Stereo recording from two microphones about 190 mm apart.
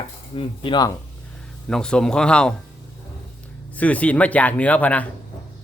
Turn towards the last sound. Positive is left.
turn(degrees=10)  # may be behind; listen again after turning